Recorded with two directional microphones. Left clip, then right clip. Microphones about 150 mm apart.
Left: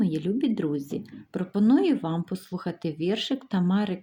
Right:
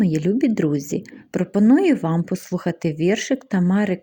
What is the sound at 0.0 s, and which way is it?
A woman's voice, 45° right (ahead or behind).